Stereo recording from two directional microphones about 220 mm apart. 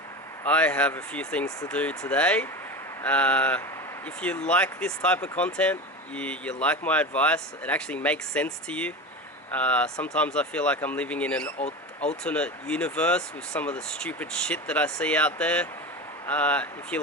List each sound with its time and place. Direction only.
0.4 s speech: 5° left (ahead or behind)
11.6 s speech: 30° left (ahead or behind)
12.2 s speech: 5° left (ahead or behind)